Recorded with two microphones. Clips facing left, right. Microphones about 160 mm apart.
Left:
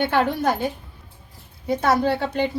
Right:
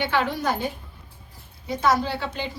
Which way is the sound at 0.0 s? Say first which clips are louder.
Left 4 dB; 50° left (ahead or behind).